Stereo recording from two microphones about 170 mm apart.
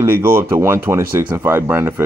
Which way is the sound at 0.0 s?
15° right (ahead or behind).